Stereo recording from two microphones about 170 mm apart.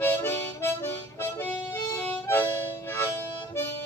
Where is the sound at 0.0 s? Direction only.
15° left (ahead or behind).